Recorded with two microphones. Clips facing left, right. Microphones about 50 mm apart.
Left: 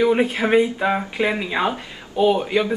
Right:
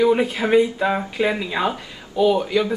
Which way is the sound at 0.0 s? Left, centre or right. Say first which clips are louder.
Even; centre.